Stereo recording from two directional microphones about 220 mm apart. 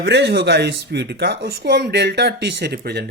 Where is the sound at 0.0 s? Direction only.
50° right (ahead or behind).